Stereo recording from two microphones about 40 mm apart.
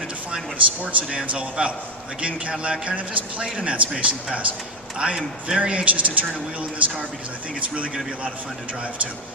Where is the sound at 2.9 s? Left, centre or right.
Right.